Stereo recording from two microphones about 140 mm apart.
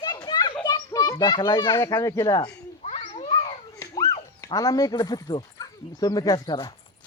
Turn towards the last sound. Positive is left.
turn(degrees=30)  # may be behind; listen again after turning